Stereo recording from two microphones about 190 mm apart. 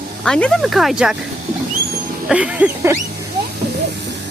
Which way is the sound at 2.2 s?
5° right (ahead or behind).